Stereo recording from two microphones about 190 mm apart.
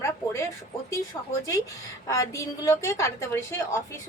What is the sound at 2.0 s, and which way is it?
Speech, 15° left (ahead or behind).